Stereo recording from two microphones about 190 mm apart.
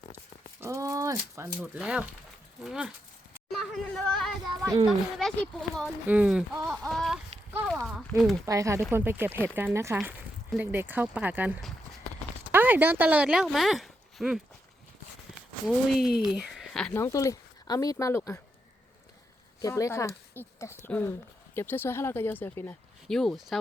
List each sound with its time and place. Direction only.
0.6 s a sound: 15° right (ahead or behind)
1.5 s speech: 5° right (ahead or behind)
6.1 s a sound: 5° right (ahead or behind)
8.4 s speech: 15° right (ahead or behind); by 14.4 s centre (ahead or behind)
15.6 s speech: centre (ahead or behind)
17.0 s speech: 15° left (ahead or behind)
19.6 s speech: 15° left (ahead or behind)